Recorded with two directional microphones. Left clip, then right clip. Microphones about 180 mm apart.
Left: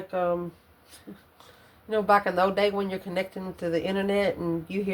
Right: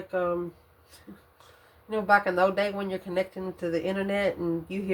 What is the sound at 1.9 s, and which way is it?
Speech, 30° left (ahead or behind).